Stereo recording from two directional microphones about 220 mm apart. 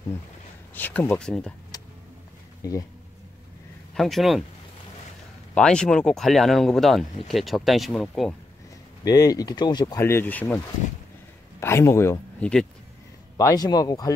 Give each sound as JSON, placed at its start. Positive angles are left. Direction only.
{"t": 0.7, "sound": "speech", "side_deg": 10}
{"t": 3.9, "sound": "speech", "side_deg": 0}
{"t": 5.5, "sound": "speech", "side_deg": 5}
{"t": 9.0, "sound": "speech", "side_deg": 15}
{"t": 11.6, "sound": "speech", "side_deg": 10}
{"t": 13.4, "sound": "speech", "side_deg": 15}